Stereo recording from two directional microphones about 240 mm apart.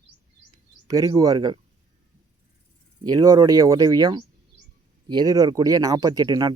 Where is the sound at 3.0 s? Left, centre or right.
Centre.